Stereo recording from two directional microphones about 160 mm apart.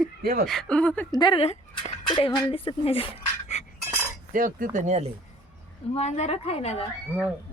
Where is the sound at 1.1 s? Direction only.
30° left (ahead or behind).